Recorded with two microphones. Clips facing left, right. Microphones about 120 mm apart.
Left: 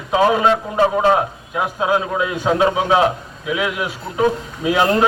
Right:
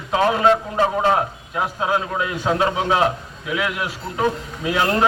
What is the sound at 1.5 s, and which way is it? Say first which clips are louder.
A man's voice: left 3 dB; 15° left (ahead or behind).